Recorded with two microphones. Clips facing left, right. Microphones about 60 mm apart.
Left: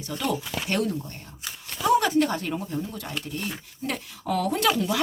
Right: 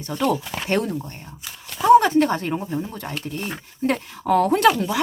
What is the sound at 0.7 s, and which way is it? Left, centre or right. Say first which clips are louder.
Speech: right 4 dB; right.